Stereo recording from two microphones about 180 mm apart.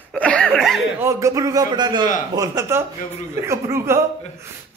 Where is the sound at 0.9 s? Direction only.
15° right (ahead or behind).